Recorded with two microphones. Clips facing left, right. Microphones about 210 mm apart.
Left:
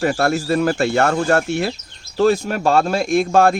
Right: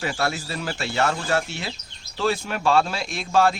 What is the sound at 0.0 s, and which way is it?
Speech, 50° left (ahead or behind).